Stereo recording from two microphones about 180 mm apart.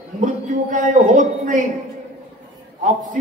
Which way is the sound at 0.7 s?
45° right (ahead or behind).